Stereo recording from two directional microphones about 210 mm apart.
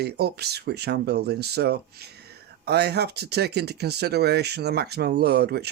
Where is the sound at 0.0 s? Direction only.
50° right (ahead or behind).